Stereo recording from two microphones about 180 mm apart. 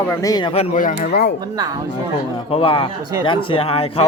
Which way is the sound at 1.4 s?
20° right (ahead or behind).